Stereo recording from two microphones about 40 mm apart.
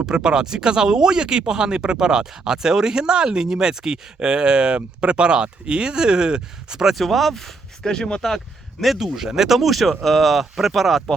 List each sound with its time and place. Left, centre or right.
0.0 s speech: centre
6.9 s speech: centre
7.9 s speech: centre
9.0 s speech: centre
9.6 s speech: centre